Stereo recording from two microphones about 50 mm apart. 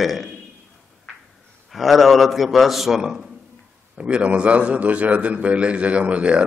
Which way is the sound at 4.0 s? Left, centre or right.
Right.